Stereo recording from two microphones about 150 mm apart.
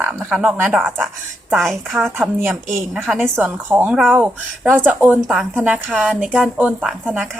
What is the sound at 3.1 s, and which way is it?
Speech, centre (ahead or behind).